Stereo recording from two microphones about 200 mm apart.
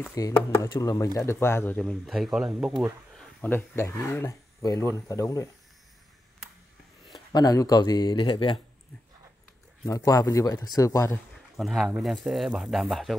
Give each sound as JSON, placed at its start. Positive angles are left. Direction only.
{"t": 0.2, "sound": "speech", "side_deg": 15}
{"t": 7.1, "sound": "speech", "side_deg": 20}
{"t": 9.8, "sound": "speech", "side_deg": 15}
{"t": 11.5, "sound": "speech", "side_deg": 0}